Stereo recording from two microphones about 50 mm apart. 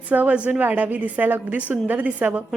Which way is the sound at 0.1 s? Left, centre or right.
Right.